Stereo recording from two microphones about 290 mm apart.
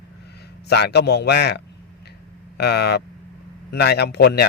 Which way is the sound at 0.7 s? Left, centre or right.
Left.